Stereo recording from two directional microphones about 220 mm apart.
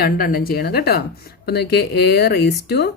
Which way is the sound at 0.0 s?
40° left (ahead or behind).